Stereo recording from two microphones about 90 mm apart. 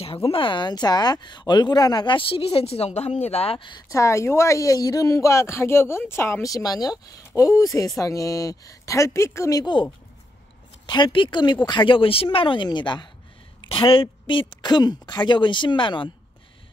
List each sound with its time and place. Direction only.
0.0 s speech: 90° left; by 3.8 s 65° left (ahead or behind)
3.9 s speech: 35° left (ahead or behind)
6.4 s speech: 40° left (ahead or behind)
9.6 s speech: 60° left (ahead or behind)
10.9 s speech: 65° left (ahead or behind)
13.7 s speech: 80° left